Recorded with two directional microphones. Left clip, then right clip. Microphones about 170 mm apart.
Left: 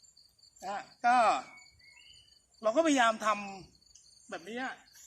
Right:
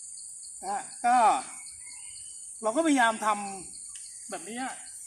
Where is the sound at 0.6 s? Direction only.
20° left (ahead or behind).